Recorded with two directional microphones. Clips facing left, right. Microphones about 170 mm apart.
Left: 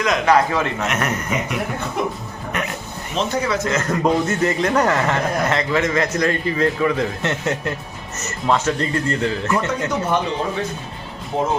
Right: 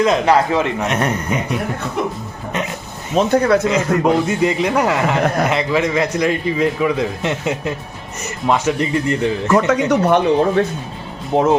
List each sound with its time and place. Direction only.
0.0 s a man's voice: 30° right (ahead or behind)
3.2 s speech: 55° right (ahead or behind)
3.7 s a man's voice: 15° right (ahead or behind)
9.5 s speech: 85° right
9.9 s speech: 60° right (ahead or behind)